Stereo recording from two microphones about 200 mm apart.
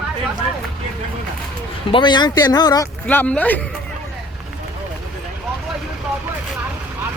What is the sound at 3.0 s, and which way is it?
Speech, 5° left (ahead or behind).